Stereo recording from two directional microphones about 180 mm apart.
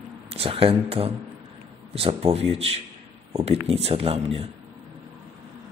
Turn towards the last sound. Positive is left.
turn(degrees=-35)  # may be behind; listen again after turning